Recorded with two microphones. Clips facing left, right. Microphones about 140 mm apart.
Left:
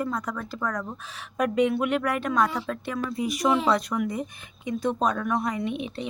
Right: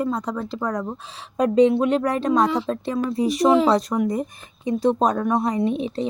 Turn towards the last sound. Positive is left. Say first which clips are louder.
# right 7 dB
turn(degrees=-35)  # may be behind; listen again after turning